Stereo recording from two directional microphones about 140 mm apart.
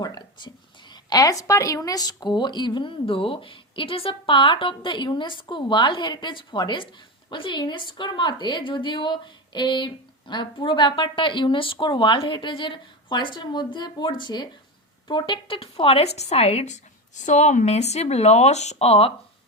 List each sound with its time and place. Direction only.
0.0 s a woman's voice: 30° left (ahead or behind); by 16.7 s 50° left (ahead or behind)
17.2 s speech: 60° left (ahead or behind); by 19.1 s 45° left (ahead or behind)